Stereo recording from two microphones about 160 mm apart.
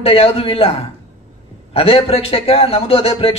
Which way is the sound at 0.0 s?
35° left (ahead or behind).